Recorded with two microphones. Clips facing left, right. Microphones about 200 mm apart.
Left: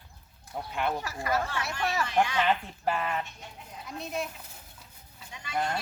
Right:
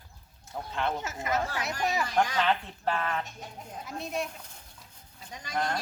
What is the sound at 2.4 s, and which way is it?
Speech, 5° left (ahead or behind).